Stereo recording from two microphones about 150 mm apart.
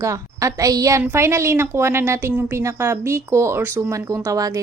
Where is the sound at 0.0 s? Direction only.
20° right (ahead or behind).